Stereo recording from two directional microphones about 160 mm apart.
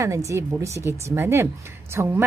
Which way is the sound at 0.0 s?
20° right (ahead or behind).